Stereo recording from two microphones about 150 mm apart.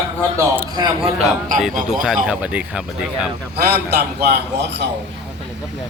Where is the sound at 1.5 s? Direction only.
Centre (ahead or behind).